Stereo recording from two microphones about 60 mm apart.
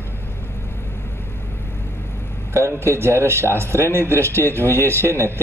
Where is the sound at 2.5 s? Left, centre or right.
Right.